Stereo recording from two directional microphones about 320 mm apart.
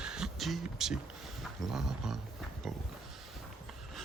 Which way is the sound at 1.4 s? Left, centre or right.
Centre.